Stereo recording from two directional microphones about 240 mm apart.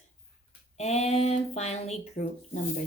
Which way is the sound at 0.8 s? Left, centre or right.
Left.